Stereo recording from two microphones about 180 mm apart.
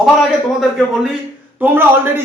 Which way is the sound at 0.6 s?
Centre (ahead or behind).